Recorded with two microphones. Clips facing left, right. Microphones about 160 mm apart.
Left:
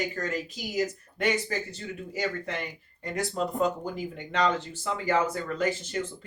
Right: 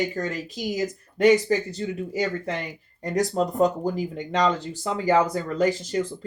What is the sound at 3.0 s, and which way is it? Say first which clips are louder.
Speech: right 6 dB; 40° right (ahead or behind).